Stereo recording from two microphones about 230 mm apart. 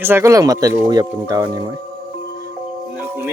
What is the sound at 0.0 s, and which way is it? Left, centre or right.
A man's voice, centre.